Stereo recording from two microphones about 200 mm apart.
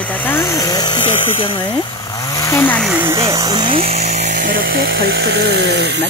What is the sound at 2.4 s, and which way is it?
Speech, 10° left (ahead or behind).